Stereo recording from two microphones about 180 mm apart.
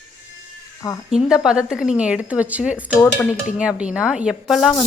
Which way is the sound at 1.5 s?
5° right (ahead or behind).